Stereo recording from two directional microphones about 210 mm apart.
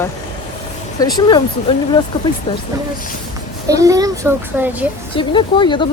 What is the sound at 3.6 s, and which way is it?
A child's voice, 15° right (ahead or behind).